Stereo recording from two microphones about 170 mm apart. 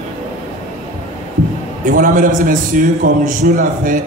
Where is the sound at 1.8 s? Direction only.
50° right (ahead or behind).